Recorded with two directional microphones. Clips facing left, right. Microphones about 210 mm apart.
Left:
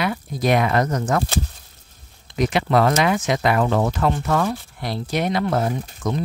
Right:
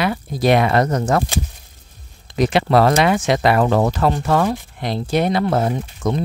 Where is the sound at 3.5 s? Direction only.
40° right (ahead or behind).